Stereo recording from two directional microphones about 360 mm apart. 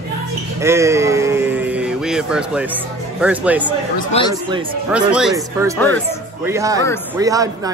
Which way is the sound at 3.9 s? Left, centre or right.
Centre.